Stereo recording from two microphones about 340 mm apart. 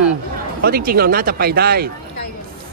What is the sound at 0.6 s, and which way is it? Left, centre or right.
Speech, right.